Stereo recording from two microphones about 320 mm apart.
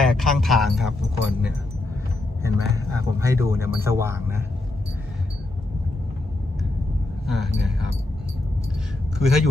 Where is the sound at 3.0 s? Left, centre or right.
Centre.